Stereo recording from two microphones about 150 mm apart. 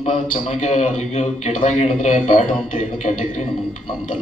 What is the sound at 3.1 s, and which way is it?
Speech, 35° left (ahead or behind).